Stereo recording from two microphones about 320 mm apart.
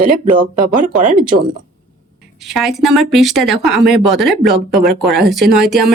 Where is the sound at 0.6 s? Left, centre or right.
Right.